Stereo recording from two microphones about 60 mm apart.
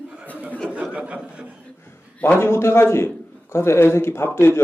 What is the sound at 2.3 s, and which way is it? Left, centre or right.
A man's voice, left.